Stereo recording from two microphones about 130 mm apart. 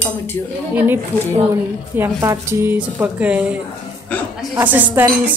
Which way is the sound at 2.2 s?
20° right (ahead or behind).